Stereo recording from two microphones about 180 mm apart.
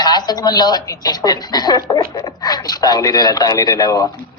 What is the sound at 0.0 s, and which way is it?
A man's voice, 20° left (ahead or behind).